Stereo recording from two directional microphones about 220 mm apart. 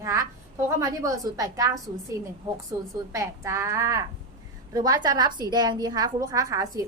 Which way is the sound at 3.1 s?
10° right (ahead or behind).